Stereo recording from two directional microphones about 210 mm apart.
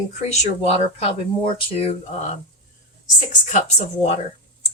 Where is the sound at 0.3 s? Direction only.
30° left (ahead or behind).